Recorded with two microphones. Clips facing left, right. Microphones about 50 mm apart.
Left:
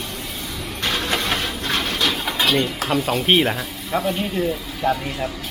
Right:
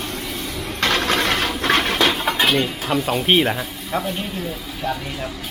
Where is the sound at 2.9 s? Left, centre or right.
Centre.